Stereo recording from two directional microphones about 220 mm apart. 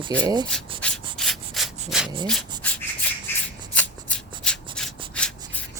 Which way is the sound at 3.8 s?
5° left (ahead or behind).